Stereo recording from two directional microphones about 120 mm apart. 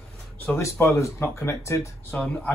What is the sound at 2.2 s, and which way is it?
Speech, 10° left (ahead or behind).